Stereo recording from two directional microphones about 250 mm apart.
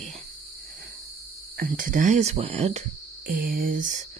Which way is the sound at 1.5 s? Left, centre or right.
Right.